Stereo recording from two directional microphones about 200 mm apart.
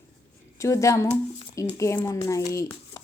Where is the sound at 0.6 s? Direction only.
15° left (ahead or behind).